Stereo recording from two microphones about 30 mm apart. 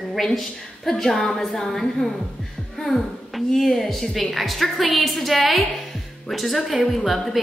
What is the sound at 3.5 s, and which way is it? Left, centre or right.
A woman's voice, centre.